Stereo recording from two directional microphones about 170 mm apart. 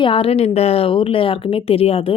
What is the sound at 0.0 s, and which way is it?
A woman's voice, 30° left (ahead or behind).